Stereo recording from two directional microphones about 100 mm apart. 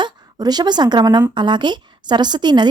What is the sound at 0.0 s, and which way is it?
A woman's voice, 45° right (ahead or behind).